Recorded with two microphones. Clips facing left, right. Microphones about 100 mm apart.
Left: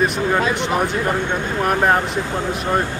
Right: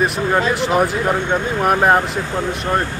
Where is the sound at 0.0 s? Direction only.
Centre (ahead or behind).